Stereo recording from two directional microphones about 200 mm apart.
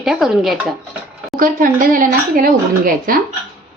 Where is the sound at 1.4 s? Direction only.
45° right (ahead or behind).